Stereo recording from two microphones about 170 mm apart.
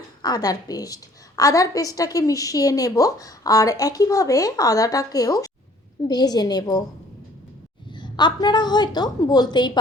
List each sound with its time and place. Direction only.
0.2 s a woman's voice: 25° left (ahead or behind)
7.9 s a woman's voice: 25° left (ahead or behind)